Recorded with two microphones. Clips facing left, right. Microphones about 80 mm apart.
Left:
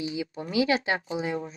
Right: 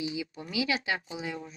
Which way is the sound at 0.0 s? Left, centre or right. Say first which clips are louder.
Left 3 dB; left.